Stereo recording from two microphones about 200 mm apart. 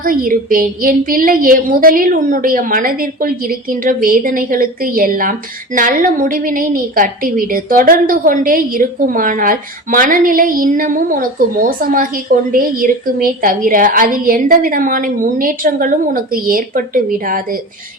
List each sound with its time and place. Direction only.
0.0 s a woman's voice: 45° right (ahead or behind)